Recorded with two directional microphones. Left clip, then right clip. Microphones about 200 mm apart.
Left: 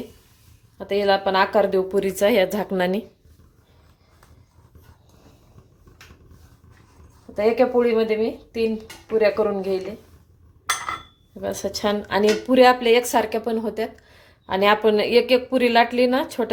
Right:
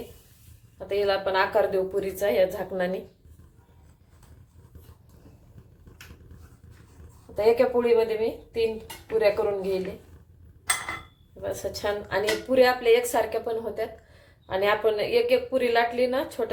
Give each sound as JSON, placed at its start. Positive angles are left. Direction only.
{"t": 0.9, "sound": "speech", "side_deg": 50}
{"t": 7.3, "sound": "a woman's voice", "side_deg": 40}
{"t": 11.4, "sound": "a woman's voice", "side_deg": 50}